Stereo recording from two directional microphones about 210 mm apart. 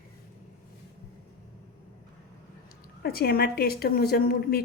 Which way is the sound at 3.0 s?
45° left (ahead or behind).